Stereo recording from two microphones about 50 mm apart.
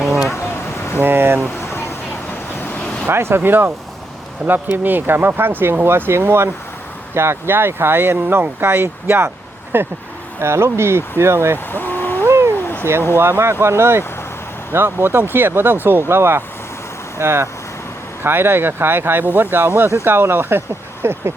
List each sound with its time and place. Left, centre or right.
0.9 s speech: right
2.8 s vehicle: left
3.1 s speech: right
10.4 s speech: right
11.7 s vehicle: left
12.2 s cat: right
13.1 s speech: right
18.2 s speech: right
19.6 s speech: right